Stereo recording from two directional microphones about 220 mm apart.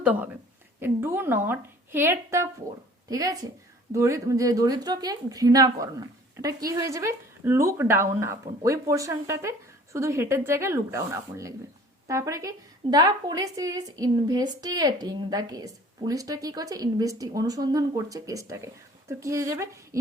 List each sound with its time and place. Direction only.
0.0 s a woman's voice: 5° right (ahead or behind)